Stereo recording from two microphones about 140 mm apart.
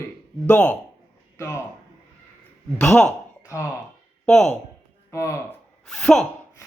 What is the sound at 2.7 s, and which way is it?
Speech, 20° left (ahead or behind).